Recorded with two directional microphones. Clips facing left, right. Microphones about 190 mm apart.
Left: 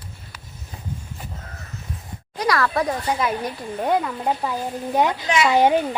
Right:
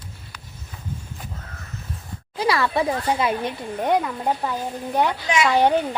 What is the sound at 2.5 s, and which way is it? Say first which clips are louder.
Speech: left 1 dB; 5° right (ahead or behind).